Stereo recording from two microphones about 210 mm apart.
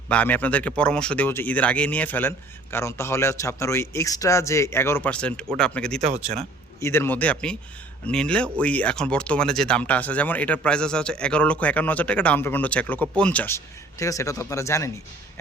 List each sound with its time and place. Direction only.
0.1 s speech: 5° left (ahead or behind)
6.0 s speech: 30° right (ahead or behind)
6.7 s speech: 10° left (ahead or behind)